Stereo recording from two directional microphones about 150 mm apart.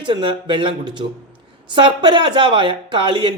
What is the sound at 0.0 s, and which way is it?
A man's voice, 35° right (ahead or behind).